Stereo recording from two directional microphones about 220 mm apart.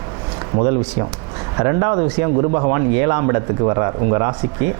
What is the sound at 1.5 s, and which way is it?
A man's voice, 20° right (ahead or behind).